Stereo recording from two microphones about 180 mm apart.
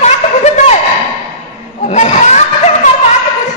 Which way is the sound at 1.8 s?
40° left (ahead or behind).